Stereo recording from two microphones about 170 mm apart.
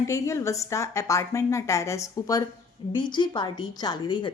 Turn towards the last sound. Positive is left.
turn(degrees=25)  # may be behind; listen again after turning